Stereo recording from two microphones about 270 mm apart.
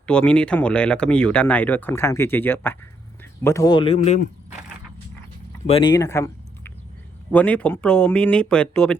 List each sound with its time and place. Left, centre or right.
0.0 s speech: centre; by 4.3 s left
5.6 s speech: centre